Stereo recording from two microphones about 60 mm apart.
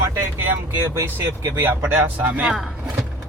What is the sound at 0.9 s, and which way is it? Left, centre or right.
Speech, right.